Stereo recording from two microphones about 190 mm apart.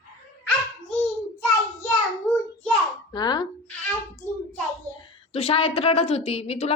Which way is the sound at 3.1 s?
20° left (ahead or behind).